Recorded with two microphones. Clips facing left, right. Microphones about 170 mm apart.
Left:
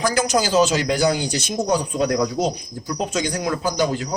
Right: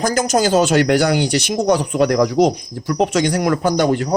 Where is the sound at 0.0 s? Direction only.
45° right (ahead or behind).